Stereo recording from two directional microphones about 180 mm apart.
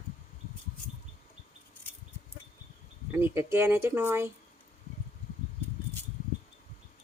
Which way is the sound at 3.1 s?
10° right (ahead or behind).